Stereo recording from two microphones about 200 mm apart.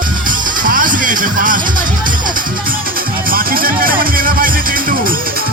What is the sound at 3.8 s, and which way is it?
Speech, 45° right (ahead or behind).